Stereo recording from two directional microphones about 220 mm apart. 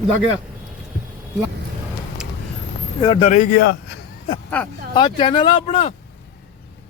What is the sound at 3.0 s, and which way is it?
Speech, 20° left (ahead or behind).